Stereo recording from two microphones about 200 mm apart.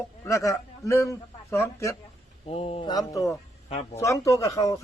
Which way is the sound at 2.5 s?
30° left (ahead or behind).